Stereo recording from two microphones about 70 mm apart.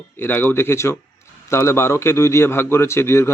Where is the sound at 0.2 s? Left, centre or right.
Left.